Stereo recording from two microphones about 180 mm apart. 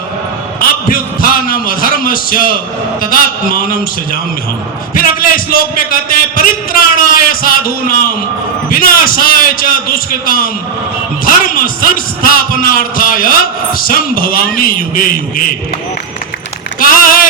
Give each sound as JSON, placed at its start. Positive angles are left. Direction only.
{"t": 0.6, "sound": "a man's voice", "side_deg": 50}
{"t": 5.5, "sound": "a man's voice", "side_deg": 50}
{"t": 16.8, "sound": "speech", "side_deg": 50}